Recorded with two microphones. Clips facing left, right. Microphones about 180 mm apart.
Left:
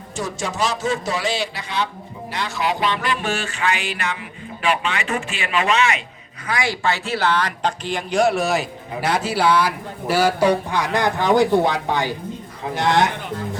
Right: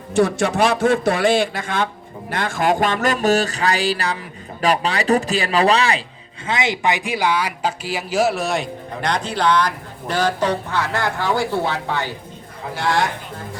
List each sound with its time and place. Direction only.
0.1 s a man's voice: 60° right (ahead or behind); by 6.0 s 35° right (ahead or behind)
6.5 s speech: 20° right (ahead or behind); by 13.1 s 20° left (ahead or behind)